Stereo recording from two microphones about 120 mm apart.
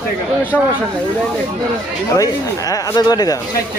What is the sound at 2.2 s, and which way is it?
Speech, 30° left (ahead or behind).